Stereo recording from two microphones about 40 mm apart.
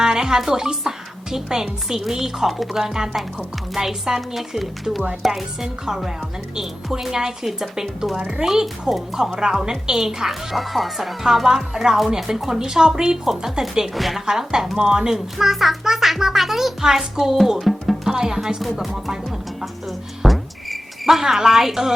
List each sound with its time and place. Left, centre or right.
0.0 s a child's voice: centre
5.6 s a child's voice: centre
14.3 s a child's voice: centre
18.0 s speech: centre
18.6 s speech: centre
20.2 s cricket: centre